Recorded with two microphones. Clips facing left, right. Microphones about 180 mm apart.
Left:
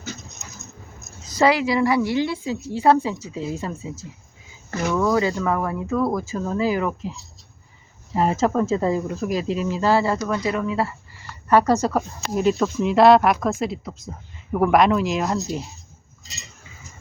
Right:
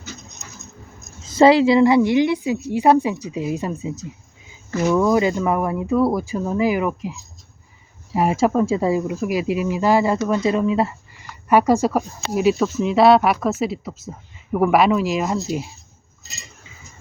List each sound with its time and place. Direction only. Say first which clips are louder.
1.2 s a woman's voice: right 6 dB; 25° right (ahead or behind)
8.1 s a woman's voice: right 2 dB; 10° right (ahead or behind)